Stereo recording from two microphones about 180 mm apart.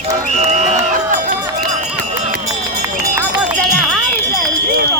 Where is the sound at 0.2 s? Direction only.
40° right (ahead or behind).